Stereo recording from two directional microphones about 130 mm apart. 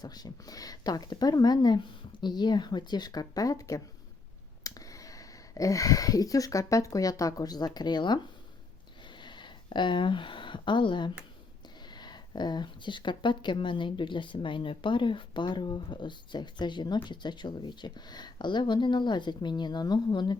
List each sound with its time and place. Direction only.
0.0 s speech: 30° left (ahead or behind)
9.0 s a sound: 35° left (ahead or behind)
11.9 s speech: 35° left (ahead or behind)